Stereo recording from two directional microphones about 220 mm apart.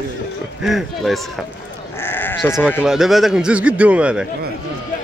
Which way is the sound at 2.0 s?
10° left (ahead or behind).